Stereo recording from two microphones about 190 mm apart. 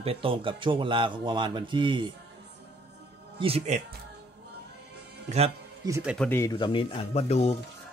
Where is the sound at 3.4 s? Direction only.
30° right (ahead or behind).